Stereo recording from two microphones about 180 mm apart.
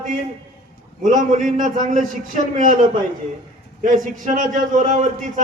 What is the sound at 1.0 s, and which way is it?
A man's voice, 45° right (ahead or behind).